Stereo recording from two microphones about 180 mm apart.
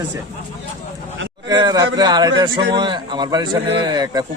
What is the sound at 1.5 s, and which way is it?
A man's voice, 25° right (ahead or behind).